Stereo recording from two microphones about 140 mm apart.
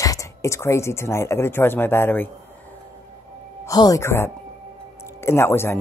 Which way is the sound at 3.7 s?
25° left (ahead or behind).